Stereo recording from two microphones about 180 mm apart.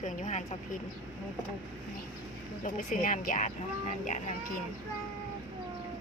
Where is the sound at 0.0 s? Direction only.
45° left (ahead or behind).